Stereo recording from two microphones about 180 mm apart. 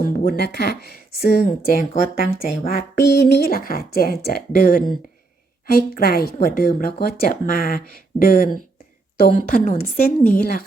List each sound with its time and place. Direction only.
0.0 s a woman's voice: 50° left (ahead or behind)